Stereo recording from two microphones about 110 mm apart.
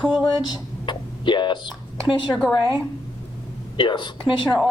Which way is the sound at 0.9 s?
45° left (ahead or behind).